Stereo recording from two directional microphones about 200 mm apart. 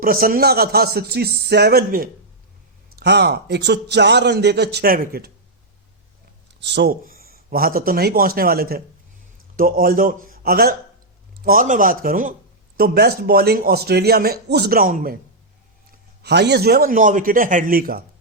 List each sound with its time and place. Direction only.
0.0 s a man's voice: 45° right (ahead or behind)
6.6 s speech: 60° right (ahead or behind)
16.2 s speech: 55° right (ahead or behind)